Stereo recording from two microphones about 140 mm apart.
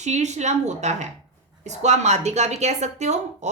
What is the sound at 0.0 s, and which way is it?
A woman's voice, 55° right (ahead or behind).